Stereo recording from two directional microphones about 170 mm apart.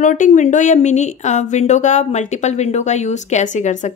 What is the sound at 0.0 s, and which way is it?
Speech, 50° left (ahead or behind).